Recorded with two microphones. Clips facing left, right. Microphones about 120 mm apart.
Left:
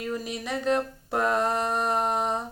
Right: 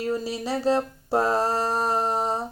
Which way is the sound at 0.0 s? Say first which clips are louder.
Right 5 dB; 30° right (ahead or behind).